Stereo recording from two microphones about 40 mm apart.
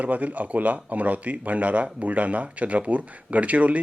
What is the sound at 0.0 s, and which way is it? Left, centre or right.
Speech, right.